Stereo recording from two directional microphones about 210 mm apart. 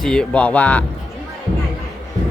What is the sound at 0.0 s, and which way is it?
Speech, 5° left (ahead or behind).